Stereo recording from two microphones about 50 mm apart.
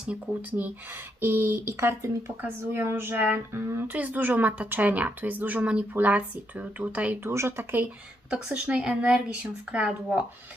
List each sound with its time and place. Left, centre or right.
1.2 s speech: right
2.6 s speech: right
3.9 s speech: right
5.9 s speech: right
7.3 s speech: right
8.4 s speech: right